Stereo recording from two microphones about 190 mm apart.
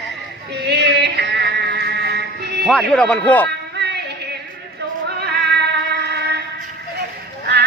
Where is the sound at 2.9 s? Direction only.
5° left (ahead or behind).